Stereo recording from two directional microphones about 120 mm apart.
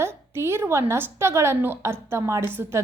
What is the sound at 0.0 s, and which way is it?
A woman's voice, 20° right (ahead or behind).